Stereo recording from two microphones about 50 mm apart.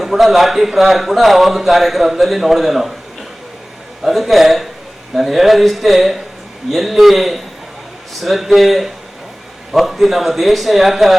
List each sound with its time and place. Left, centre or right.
0.0 s a man's voice: centre
4.0 s a man's voice: centre